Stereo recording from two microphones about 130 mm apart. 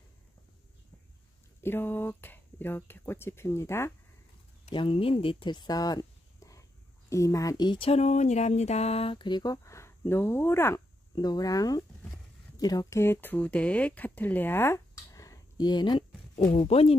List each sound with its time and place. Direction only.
1.6 s speech: 15° left (ahead or behind)
4.6 s speech: 40° left (ahead or behind)
7.9 s speech: 60° left (ahead or behind); by 10.8 s 20° left (ahead or behind)
11.1 s speech: 30° left (ahead or behind)
13.0 s speech: 15° left (ahead or behind); by 16.0 s 35° left (ahead or behind)
16.4 s speech: 55° left (ahead or behind)